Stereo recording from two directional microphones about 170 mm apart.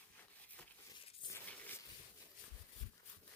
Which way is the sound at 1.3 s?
10° left (ahead or behind).